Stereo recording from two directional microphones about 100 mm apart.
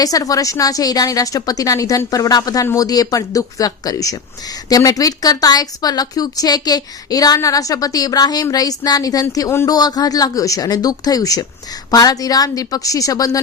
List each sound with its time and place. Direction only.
0.0 s speech: 35° left (ahead or behind)